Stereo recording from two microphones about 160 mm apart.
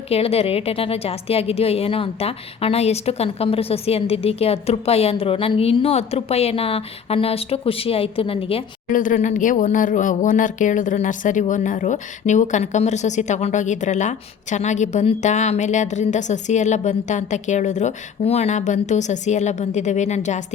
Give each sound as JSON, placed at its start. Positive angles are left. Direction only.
{"t": 0.1, "sound": "a woman's voice", "side_deg": 40}
{"t": 8.9, "sound": "speech", "side_deg": 55}